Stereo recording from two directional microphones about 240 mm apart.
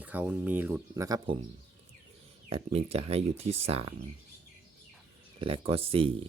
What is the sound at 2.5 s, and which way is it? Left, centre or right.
Speech, right.